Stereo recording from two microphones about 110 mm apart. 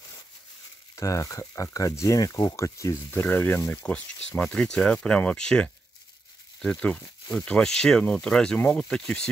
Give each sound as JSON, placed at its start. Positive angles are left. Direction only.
{"t": 0.9, "sound": "speech", "side_deg": 30}